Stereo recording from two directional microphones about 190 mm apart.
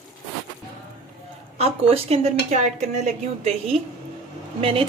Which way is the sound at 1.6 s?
30° right (ahead or behind).